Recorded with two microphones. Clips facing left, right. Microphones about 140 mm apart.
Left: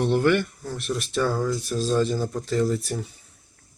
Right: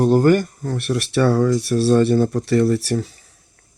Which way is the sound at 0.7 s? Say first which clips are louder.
Right 7 dB; 65° right (ahead or behind).